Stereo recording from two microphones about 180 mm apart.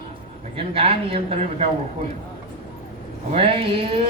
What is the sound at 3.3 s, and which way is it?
Speech, 30° right (ahead or behind).